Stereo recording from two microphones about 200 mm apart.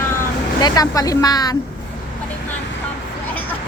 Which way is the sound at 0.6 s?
20° left (ahead or behind).